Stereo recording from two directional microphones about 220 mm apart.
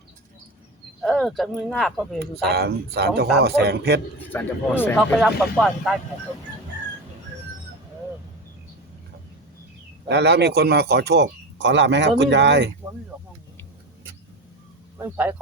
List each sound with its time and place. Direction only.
1.0 s speech: centre (ahead or behind)
2.1 s speech: 45° right (ahead or behind)
4.3 s speech: 10° left (ahead or behind)
10.1 s speech: 50° right (ahead or behind)
14.9 s speech: 10° right (ahead or behind)